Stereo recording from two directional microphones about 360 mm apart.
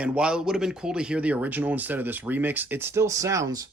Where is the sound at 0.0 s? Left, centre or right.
Centre.